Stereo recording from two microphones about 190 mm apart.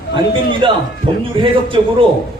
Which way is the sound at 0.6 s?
25° right (ahead or behind).